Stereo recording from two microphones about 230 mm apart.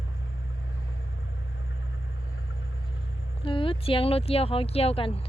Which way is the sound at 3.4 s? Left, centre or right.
Left.